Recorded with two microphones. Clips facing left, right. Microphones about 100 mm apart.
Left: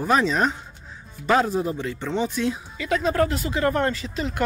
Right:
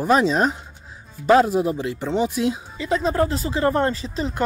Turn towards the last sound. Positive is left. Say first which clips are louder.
# right 2 dB
turn(degrees=-30)  # may be behind; listen again after turning